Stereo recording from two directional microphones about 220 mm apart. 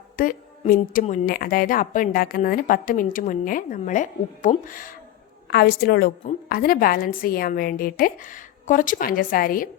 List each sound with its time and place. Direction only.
0.2 s a woman's voice: 40° left (ahead or behind)